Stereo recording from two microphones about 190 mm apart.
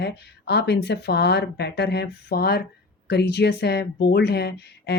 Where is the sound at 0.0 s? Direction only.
60° left (ahead or behind).